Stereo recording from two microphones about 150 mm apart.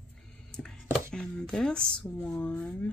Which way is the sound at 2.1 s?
15° left (ahead or behind).